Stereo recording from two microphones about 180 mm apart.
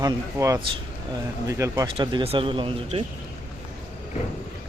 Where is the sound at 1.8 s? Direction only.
30° right (ahead or behind).